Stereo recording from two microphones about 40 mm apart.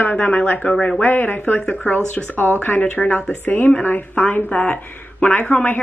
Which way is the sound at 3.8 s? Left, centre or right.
Left.